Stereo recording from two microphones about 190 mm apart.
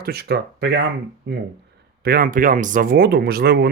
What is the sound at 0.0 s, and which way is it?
Speech, 55° right (ahead or behind).